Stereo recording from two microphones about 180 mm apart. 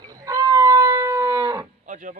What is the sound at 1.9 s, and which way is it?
Speech, 45° right (ahead or behind).